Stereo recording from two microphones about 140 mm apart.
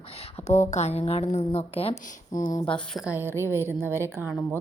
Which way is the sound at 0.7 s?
50° left (ahead or behind).